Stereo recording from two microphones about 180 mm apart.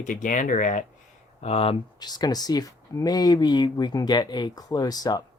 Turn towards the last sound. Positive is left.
turn(degrees=20)  # may be behind; listen again after turning